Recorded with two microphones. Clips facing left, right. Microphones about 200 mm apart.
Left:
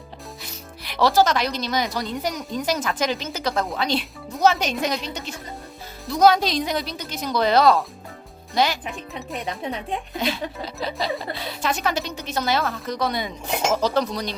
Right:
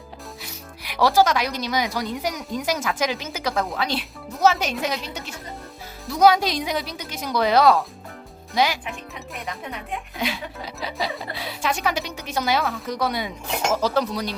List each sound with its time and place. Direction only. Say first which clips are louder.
0.4 s speech: even; 10° right (ahead or behind)
9.3 s speech: left 5 dB; 30° left (ahead or behind)
10.2 s speech: left 2 dB; 10° right (ahead or behind)